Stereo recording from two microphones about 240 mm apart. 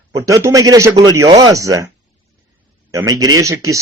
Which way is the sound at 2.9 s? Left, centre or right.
Centre.